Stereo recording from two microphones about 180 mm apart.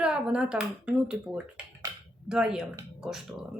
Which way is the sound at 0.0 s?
5° right (ahead or behind).